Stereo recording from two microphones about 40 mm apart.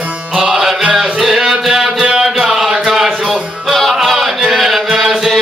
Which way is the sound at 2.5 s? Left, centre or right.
Centre.